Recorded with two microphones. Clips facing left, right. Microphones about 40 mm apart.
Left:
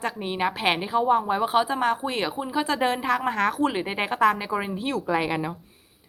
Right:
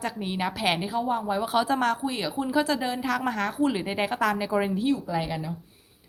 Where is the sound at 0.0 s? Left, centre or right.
Left.